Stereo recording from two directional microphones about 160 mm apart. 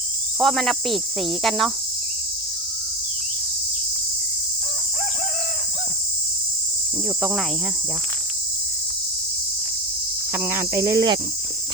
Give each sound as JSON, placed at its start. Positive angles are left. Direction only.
{"t": 0.3, "sound": "cricket", "side_deg": 0}
{"t": 10.3, "sound": "cricket", "side_deg": -15}